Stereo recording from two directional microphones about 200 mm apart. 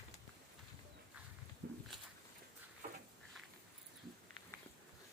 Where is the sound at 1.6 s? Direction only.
50° right (ahead or behind).